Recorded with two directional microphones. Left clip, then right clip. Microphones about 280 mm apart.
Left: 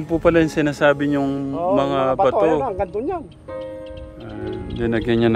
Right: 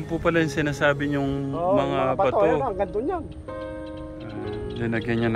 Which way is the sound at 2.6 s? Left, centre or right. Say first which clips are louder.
Left 2 dB; left.